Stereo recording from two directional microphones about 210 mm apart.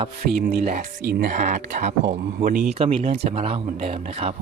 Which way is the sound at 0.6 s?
35° right (ahead or behind).